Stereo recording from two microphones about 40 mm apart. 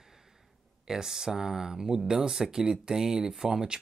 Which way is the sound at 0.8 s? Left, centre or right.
Centre.